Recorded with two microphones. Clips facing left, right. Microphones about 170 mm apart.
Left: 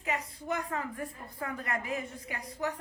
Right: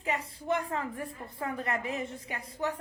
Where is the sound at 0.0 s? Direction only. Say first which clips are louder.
Right 1 dB; 30° right (ahead or behind).